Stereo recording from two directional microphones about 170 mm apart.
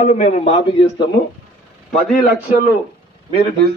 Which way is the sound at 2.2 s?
50° left (ahead or behind).